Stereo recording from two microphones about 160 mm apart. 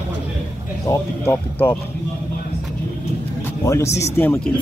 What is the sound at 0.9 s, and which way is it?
Speech, 15° left (ahead or behind).